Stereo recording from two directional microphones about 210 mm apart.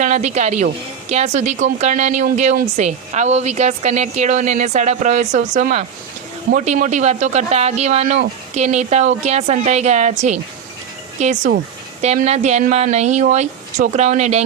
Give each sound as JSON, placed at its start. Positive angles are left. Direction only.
{"t": 0.0, "sound": "speech", "side_deg": -35}